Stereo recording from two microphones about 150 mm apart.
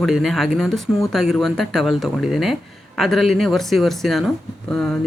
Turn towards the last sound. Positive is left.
turn(degrees=5)  # may be behind; listen again after turning